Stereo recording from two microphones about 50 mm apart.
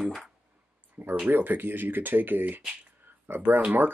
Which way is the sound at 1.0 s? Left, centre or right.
Right.